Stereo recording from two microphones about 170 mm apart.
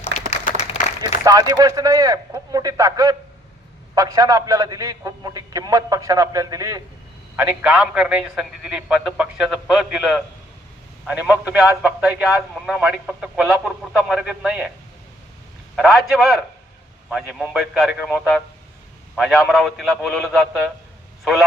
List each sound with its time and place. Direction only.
0.3 s applause: 40° left (ahead or behind)
1.0 s a man's voice: 20° right (ahead or behind)
7.3 s a man's voice: 10° right (ahead or behind)
11.0 s a man's voice: 10° right (ahead or behind)
15.7 s a man's voice: centre (ahead or behind)